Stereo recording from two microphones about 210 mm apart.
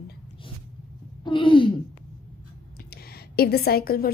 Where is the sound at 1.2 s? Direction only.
25° left (ahead or behind).